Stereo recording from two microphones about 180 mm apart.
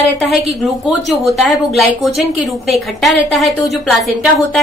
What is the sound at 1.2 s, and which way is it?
A woman's voice, centre (ahead or behind).